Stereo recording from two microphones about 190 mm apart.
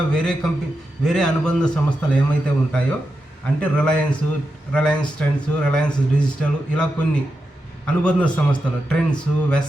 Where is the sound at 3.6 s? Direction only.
5° left (ahead or behind).